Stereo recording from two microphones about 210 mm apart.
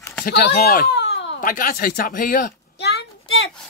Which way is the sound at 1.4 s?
40° left (ahead or behind).